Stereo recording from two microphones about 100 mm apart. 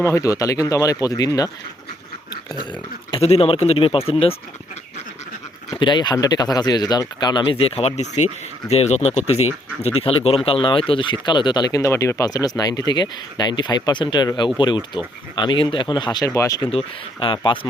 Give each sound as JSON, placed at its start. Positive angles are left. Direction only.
{"t": 0.0, "sound": "speech", "side_deg": 30}
{"t": 3.1, "sound": "speech", "side_deg": 85}
{"t": 5.7, "sound": "speech", "side_deg": 50}
{"t": 7.5, "sound": "speech", "side_deg": 80}
{"t": 9.8, "sound": "speech", "side_deg": 75}
{"t": 16.3, "sound": "speech", "side_deg": 30}
{"t": 16.7, "sound": "speech", "side_deg": 60}